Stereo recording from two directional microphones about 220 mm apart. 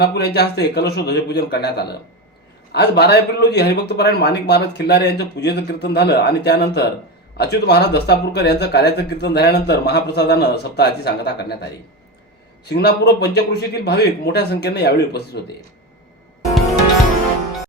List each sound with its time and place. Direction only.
0.0 s speech: 50° left (ahead or behind)
16.4 s music: centre (ahead or behind)